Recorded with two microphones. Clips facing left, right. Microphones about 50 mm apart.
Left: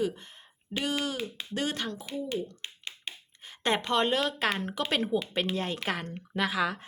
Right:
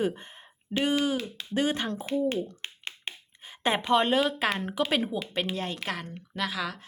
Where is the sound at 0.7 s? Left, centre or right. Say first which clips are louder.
Right 5 dB; right.